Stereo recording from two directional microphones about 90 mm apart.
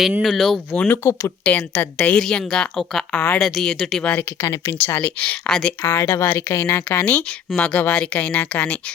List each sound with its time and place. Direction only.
0.2 s speech: centre (ahead or behind)
1.2 s a woman's voice: 15° left (ahead or behind)
3.1 s speech: 25° left (ahead or behind)
3.4 s speech: centre (ahead or behind)
4.0 s speech: 20° left (ahead or behind)
4.4 s speech: 30° left (ahead or behind)
4.8 s a woman's voice: 20° left (ahead or behind)
5.5 s speech: 5° left (ahead or behind)
5.8 s a woman's voice: 30° left (ahead or behind); by 8.8 s 15° left (ahead or behind)